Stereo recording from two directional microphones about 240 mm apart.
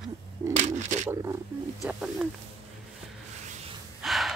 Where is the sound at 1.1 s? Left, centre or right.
Centre.